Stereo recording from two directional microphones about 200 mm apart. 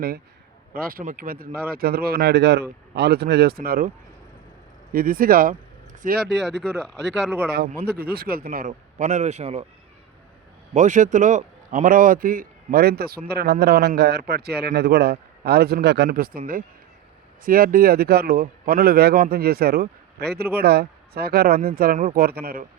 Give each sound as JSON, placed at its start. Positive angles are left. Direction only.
{"t": 0.7, "sound": "a man's voice", "side_deg": -45}
{"t": 10.8, "sound": "a man's voice", "side_deg": -40}
{"t": 17.4, "sound": "a man's voice", "side_deg": -45}